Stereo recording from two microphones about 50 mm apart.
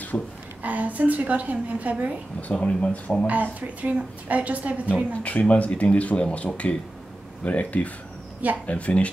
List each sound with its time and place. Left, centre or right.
0.1 s a woman's voice: left
0.6 s a woman's voice: right
2.6 s speech: left
3.3 s a woman's voice: right
5.1 s speech: left